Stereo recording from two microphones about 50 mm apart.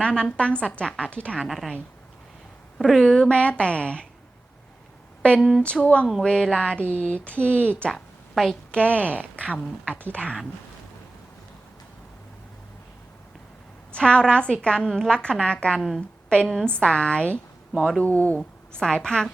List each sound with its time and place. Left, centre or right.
0.0 s speech: centre
1.4 s speech: centre
2.7 s speech: centre
3.1 s speech: centre
5.4 s speech: centre
5.6 s a woman's voice: left
7.9 s a sound: centre
8.7 s speech: left
13.9 s a woman's voice: centre
18.0 s speech: left
18.8 s a woman's voice: centre